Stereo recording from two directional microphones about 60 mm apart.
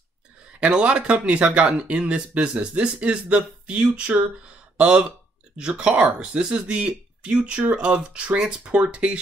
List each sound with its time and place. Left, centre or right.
0.6 s speech: centre